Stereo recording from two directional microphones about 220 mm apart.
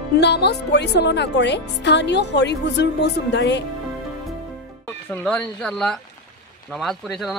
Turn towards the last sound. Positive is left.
turn(degrees=0)  # may be behind; listen again after turning